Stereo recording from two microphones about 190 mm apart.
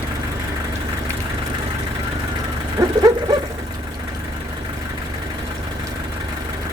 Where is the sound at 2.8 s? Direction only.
20° right (ahead or behind).